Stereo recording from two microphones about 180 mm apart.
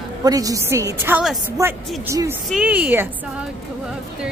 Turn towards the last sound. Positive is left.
turn(degrees=-10)  # may be behind; listen again after turning